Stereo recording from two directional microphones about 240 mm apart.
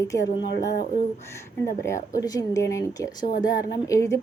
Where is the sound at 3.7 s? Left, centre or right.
Centre.